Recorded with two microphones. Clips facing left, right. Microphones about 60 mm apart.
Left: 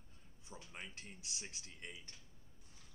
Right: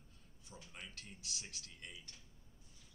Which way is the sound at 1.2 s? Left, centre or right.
Left.